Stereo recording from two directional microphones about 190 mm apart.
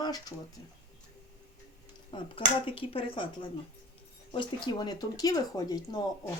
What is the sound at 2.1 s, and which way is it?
Speech, 30° left (ahead or behind).